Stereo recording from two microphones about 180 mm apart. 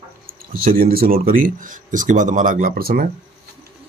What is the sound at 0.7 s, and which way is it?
Speech, 55° right (ahead or behind).